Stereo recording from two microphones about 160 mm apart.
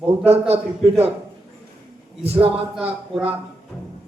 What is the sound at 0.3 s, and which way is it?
Speech, 40° right (ahead or behind).